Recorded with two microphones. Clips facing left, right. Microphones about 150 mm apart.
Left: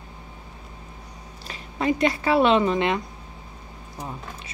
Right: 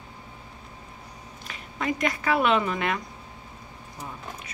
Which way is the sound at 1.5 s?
30° left (ahead or behind).